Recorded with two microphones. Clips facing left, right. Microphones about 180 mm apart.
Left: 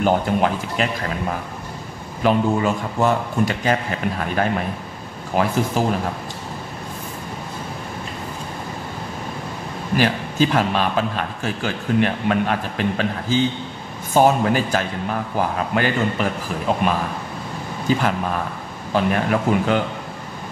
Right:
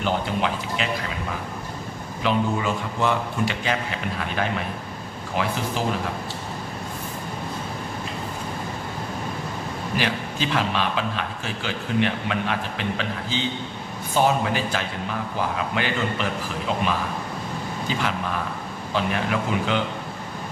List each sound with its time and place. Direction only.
0.0 s a man's voice: 45° left (ahead or behind)
2.2 s a man's voice: 45° left (ahead or behind)
9.9 s a man's voice: 45° left (ahead or behind)